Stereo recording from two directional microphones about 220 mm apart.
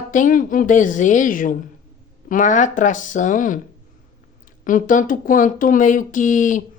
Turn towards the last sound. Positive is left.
turn(degrees=35)  # may be behind; listen again after turning